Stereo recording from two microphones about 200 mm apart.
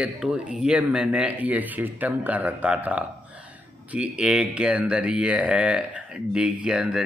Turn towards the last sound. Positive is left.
turn(degrees=-5)  # may be behind; listen again after turning